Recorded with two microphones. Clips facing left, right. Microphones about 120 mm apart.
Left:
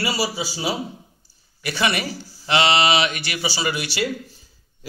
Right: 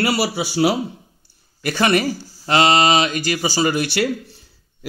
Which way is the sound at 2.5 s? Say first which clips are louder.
Right 3 dB; 45° right (ahead or behind).